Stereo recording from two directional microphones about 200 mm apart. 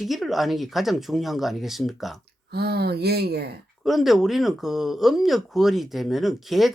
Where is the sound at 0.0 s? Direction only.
Centre (ahead or behind).